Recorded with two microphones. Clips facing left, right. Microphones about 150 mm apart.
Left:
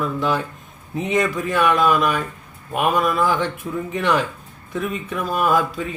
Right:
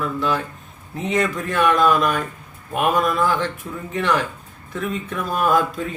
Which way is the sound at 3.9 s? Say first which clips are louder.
Even; 20° left (ahead or behind).